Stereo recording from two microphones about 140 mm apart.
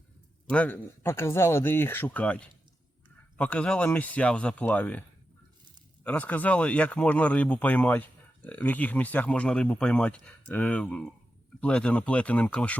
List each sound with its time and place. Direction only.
0.5 s speech: 10° left (ahead or behind)
6.1 s speech: 10° left (ahead or behind)